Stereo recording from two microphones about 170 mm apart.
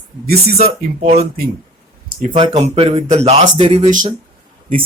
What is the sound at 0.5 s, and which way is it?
Speech, 40° right (ahead or behind).